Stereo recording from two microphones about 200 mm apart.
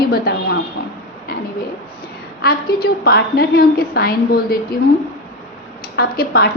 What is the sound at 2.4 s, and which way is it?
A woman's voice, 50° left (ahead or behind).